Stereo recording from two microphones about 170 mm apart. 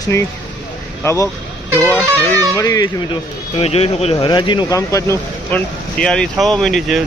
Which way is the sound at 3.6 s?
35° left (ahead or behind).